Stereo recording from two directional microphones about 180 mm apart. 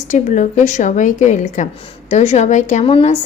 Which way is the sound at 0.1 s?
45° left (ahead or behind).